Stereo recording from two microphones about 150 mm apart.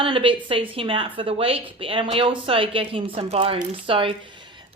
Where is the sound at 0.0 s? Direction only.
35° right (ahead or behind).